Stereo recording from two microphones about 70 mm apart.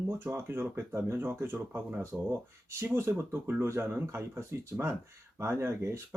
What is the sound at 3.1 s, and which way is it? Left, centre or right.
Speech, right.